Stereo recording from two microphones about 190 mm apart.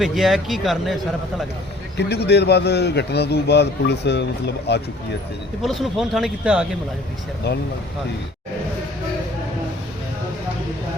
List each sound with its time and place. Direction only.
0.0 s speech: centre (ahead or behind)
2.0 s a man's voice: 60° left (ahead or behind)
5.6 s speech: centre (ahead or behind)